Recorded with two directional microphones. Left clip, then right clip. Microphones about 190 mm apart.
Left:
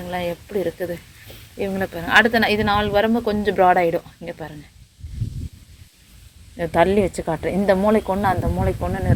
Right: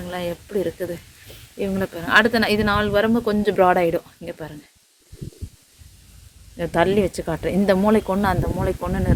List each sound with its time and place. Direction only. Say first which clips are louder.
0.1 s speech: left 1 dB; 15° right (ahead or behind)
6.6 s speech: left 2 dB; 10° right (ahead or behind)